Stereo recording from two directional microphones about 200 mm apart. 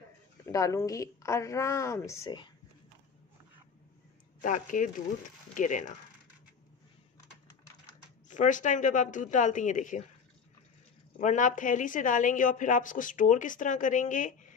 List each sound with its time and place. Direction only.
0.5 s a woman's voice: 15° left (ahead or behind)
4.4 s a woman's voice: 40° left (ahead or behind)
8.3 s a woman's voice: 40° left (ahead or behind)
11.1 s a woman's voice: 40° left (ahead or behind)